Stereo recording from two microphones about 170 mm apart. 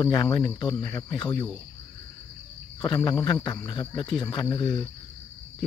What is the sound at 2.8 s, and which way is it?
Speech, 20° left (ahead or behind).